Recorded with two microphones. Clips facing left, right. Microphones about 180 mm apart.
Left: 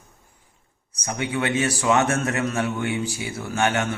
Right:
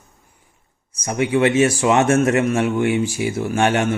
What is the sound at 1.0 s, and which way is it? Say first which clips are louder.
A man's voice: right 8 dB; 20° right (ahead or behind).